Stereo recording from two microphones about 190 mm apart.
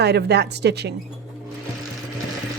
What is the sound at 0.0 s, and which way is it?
Speech, 60° right (ahead or behind).